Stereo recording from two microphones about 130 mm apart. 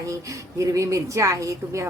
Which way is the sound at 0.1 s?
25° right (ahead or behind).